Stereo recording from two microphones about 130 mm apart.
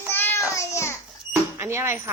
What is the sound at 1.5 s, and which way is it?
Speech, 20° right (ahead or behind).